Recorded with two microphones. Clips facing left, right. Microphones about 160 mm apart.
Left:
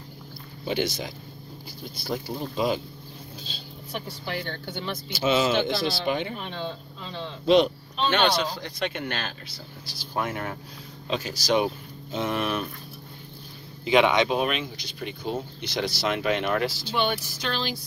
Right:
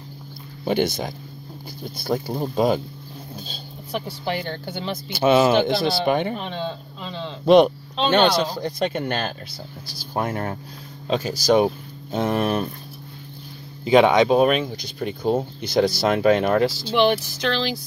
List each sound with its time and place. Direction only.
0.7 s speech: 55° right (ahead or behind)
4.7 s speech: 60° right (ahead or behind); by 7.2 s 80° right
7.4 s speech: 55° right (ahead or behind)
8.1 s speech: 40° right (ahead or behind)
13.8 s speech: 40° right (ahead or behind)
17.0 s speech: 80° right